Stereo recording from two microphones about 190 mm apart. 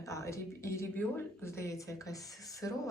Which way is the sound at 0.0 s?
15° left (ahead or behind).